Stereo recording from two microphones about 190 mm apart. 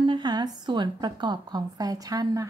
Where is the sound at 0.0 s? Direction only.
25° right (ahead or behind).